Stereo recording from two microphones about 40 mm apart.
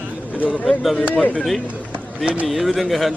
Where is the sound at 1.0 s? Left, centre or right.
Left.